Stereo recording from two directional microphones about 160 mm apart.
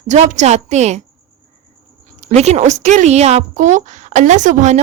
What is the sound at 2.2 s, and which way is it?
A woman's voice, 45° right (ahead or behind).